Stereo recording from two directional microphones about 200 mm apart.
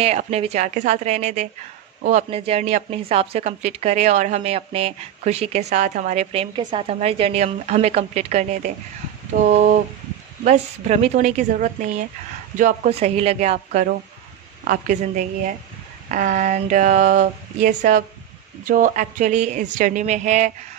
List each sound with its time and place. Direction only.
0.0 s a woman's voice: 30° right (ahead or behind)